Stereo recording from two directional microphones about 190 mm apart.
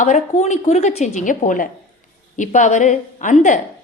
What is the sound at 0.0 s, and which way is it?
A woman's voice, 40° left (ahead or behind).